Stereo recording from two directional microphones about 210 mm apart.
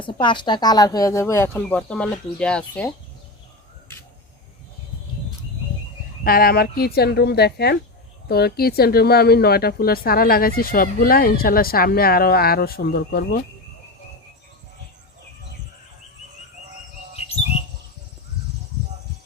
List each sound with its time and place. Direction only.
0.0 s speech: 25° left (ahead or behind); by 2.9 s 5° left (ahead or behind)
6.2 s speech: 45° left (ahead or behind)